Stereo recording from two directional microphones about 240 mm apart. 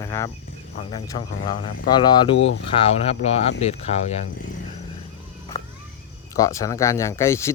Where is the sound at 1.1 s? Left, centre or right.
Left.